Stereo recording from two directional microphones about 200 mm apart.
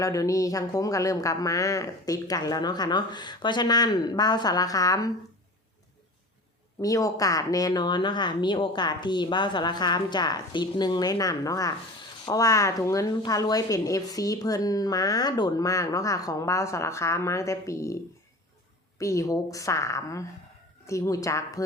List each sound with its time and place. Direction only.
0.0 s a woman's voice: 15° left (ahead or behind)
6.8 s a woman's voice: 15° left (ahead or behind)
18.9 s a woman's voice: 15° left (ahead or behind)